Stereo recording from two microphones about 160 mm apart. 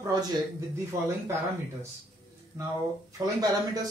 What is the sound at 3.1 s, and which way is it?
Speech, 25° right (ahead or behind).